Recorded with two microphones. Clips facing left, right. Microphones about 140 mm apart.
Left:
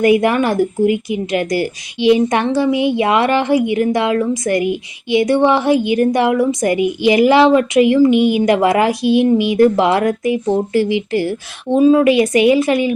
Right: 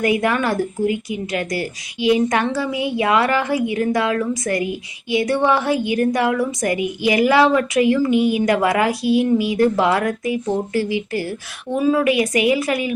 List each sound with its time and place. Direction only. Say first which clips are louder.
0.0 s a woman's voice: left 6 dB; 25° left (ahead or behind)